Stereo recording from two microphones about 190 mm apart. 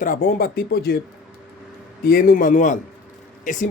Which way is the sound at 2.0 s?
50° left (ahead or behind).